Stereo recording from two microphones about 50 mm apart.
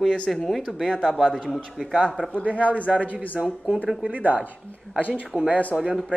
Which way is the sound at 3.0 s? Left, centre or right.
Left.